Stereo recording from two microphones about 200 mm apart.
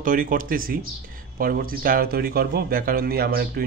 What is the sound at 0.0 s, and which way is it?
A man's voice, 45° right (ahead or behind).